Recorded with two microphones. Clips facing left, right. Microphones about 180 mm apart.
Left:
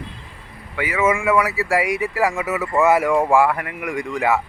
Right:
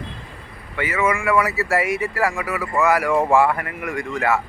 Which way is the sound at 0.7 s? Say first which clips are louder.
Left 1 dB; 10° left (ahead or behind).